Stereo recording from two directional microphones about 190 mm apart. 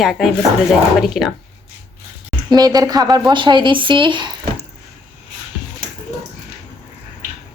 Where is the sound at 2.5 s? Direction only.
20° right (ahead or behind).